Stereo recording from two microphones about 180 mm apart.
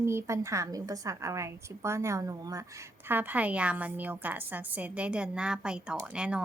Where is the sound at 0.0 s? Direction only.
15° right (ahead or behind).